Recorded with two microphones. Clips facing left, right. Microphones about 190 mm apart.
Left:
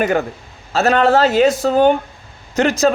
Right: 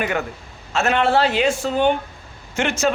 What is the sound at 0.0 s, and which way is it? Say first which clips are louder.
A man's voice: left 6 dB; 35° left (ahead or behind).